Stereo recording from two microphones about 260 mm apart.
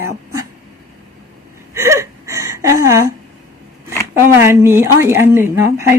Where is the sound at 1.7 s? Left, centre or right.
Centre.